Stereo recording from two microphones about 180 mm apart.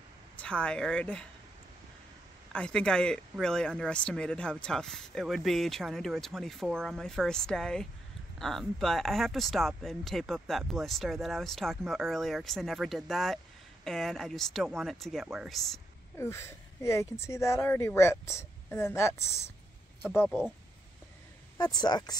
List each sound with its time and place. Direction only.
0.4 s speech: 5° left (ahead or behind)
2.5 s speech: 5° left (ahead or behind)
16.2 s speech: 15° left (ahead or behind)
20.1 s speech: 5° right (ahead or behind)
21.5 s speech: 20° left (ahead or behind)